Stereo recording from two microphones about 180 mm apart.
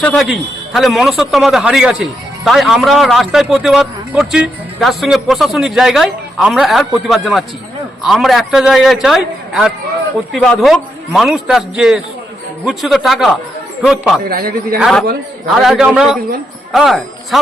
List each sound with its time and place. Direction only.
0.0 s a man's voice: 5° left (ahead or behind)
14.3 s a man's voice: 55° right (ahead or behind)
14.8 s a man's voice: centre (ahead or behind)